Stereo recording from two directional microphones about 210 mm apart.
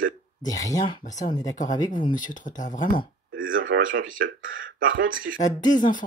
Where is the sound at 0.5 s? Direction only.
15° left (ahead or behind).